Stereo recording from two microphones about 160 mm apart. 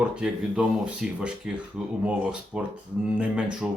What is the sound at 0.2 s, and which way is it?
Speech, 5° right (ahead or behind).